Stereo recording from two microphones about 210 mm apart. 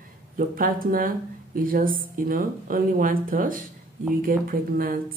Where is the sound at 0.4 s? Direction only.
40° right (ahead or behind).